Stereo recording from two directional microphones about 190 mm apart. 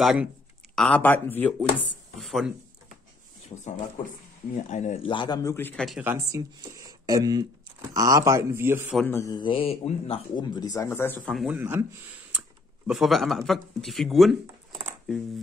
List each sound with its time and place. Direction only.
0.0 s speech: 5° right (ahead or behind)
3.5 s a man's voice: 20° left (ahead or behind)
4.6 s a man's voice: 40° left (ahead or behind); by 5.9 s 10° left (ahead or behind)
5.9 s speech: 5° right (ahead or behind)
6.1 s speech: 15° right (ahead or behind)
8.9 s speech: 10° left (ahead or behind)
11.5 s speech: 10° right (ahead or behind)